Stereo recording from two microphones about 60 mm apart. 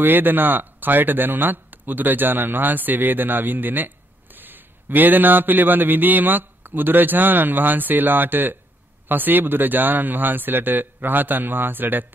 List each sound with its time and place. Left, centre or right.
0.0 s speech: right